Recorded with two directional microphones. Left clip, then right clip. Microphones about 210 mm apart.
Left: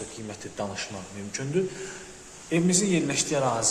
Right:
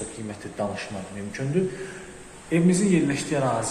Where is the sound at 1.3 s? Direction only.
20° left (ahead or behind).